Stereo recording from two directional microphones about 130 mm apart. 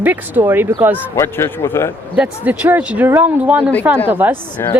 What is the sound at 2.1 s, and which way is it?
Speech, 10° right (ahead or behind).